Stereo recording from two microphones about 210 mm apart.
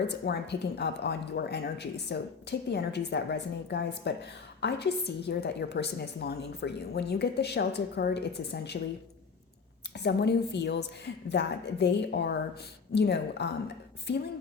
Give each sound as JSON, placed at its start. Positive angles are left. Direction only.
{"t": 0.3, "sound": "a woman's voice", "side_deg": 50}
{"t": 9.9, "sound": "a woman's voice", "side_deg": 55}